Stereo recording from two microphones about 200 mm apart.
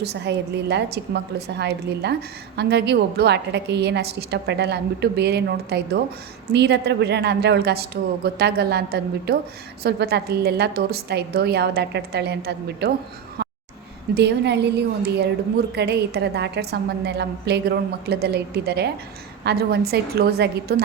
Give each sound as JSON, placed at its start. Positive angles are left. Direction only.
{"t": 0.0, "sound": "a woman's voice", "side_deg": -55}
{"t": 13.4, "sound": "a sound", "side_deg": -55}
{"t": 14.2, "sound": "a woman's voice", "side_deg": -55}